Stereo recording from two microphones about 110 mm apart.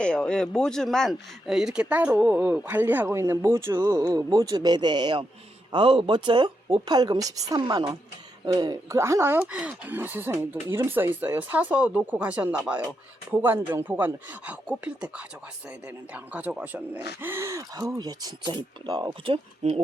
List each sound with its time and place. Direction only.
0.0 s a woman's voice: 10° left (ahead or behind); by 7.6 s 35° right (ahead or behind)
7.6 s a woman's voice: 45° right (ahead or behind)
9.0 s a man's voice: 25° right (ahead or behind); by 19.7 s 50° right (ahead or behind)